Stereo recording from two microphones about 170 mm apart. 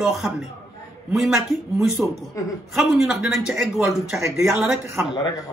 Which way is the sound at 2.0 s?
10° right (ahead or behind).